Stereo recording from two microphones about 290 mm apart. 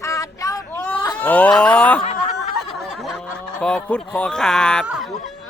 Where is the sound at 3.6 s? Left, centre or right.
Centre.